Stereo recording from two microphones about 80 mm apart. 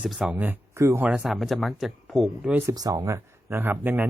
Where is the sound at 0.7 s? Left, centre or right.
Right.